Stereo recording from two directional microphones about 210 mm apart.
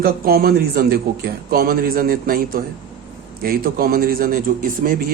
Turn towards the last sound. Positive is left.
turn(degrees=-45)  # may be behind; listen again after turning